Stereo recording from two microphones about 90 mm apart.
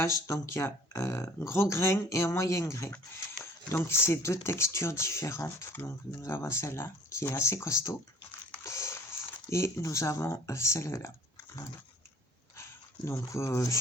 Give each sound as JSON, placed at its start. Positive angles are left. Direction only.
{"t": 0.0, "sound": "speech", "side_deg": 30}
{"t": 13.1, "sound": "speech", "side_deg": 30}